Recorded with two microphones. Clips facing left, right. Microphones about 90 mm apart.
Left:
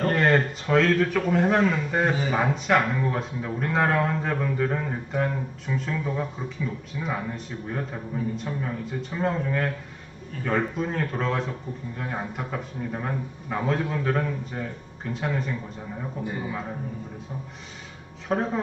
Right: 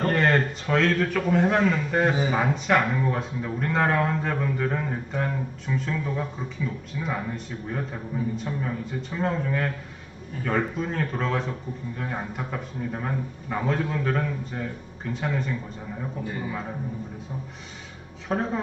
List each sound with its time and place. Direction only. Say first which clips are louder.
0.0 s a man's voice: left 1 dB; centre (ahead or behind)
18.3 s speech: left 1 dB; centre (ahead or behind)